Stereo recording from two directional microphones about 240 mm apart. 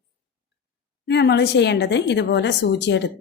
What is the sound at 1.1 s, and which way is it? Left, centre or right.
A woman's voice, left.